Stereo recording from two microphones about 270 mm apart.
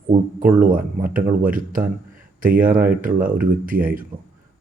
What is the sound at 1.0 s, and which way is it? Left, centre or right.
Speech, right.